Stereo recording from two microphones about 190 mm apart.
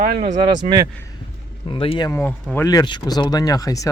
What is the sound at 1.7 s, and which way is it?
Speech, 30° left (ahead or behind).